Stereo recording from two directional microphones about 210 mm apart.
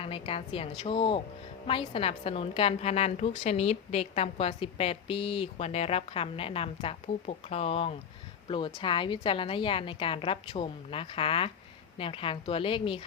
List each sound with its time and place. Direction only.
0.0 s a woman's voice: 25° left (ahead or behind)